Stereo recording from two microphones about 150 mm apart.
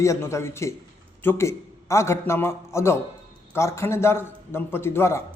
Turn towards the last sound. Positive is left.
turn(degrees=15)  # may be behind; listen again after turning